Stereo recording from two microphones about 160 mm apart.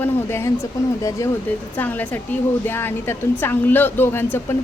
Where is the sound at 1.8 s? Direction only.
10° left (ahead or behind).